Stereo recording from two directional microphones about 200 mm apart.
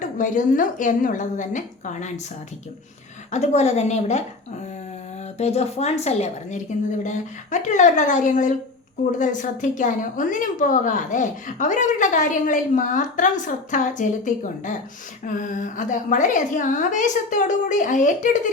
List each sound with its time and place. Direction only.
0.0 s a woman's voice: 40° left (ahead or behind)
3.3 s a woman's voice: 35° left (ahead or behind)
5.4 s a woman's voice: 30° left (ahead or behind)